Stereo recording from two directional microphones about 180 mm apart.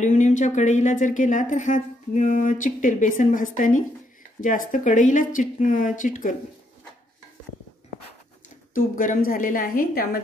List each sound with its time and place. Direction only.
0.0 s speech: 45° left (ahead or behind)
8.7 s speech: 50° left (ahead or behind)